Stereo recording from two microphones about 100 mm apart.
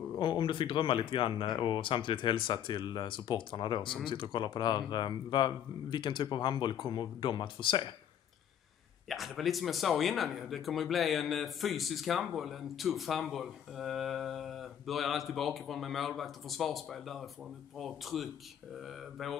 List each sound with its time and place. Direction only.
0.2 s speech: 55° left (ahead or behind)
9.1 s speech: centre (ahead or behind)